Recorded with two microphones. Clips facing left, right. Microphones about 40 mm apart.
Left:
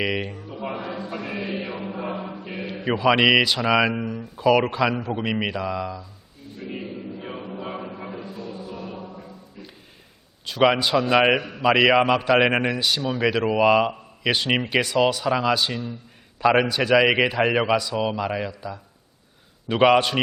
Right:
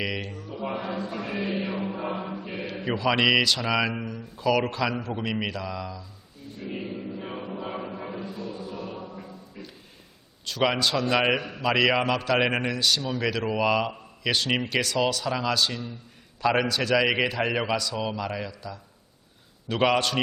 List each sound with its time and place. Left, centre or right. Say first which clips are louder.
0.0 s a man's voice: left 5 dB; centre
0.7 s a man's voice: even; centre
1.4 s chant: right 4 dB; centre
2.8 s a man's voice: left 5 dB; centre
6.6 s choir: left 1 dB; centre
10.4 s a man's voice: left 5 dB; centre